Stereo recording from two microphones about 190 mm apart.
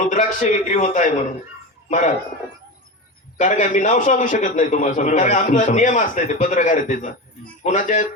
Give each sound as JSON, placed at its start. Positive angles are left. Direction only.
{"t": 0.0, "sound": "a man's voice", "side_deg": 40}
{"t": 3.3, "sound": "a man's voice", "side_deg": 40}